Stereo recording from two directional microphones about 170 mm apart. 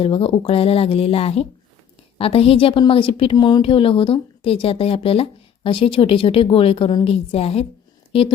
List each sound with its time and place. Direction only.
0.0 s a woman's voice: 35° left (ahead or behind)